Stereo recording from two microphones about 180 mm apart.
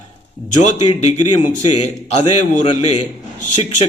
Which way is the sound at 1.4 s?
40° left (ahead or behind).